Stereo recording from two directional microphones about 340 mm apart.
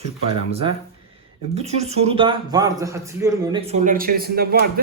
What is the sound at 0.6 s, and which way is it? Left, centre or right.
A man's voice, centre.